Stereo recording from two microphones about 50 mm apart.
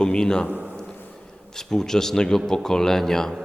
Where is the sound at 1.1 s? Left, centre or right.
Centre.